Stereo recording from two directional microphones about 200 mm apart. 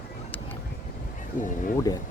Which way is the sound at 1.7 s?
20° left (ahead or behind).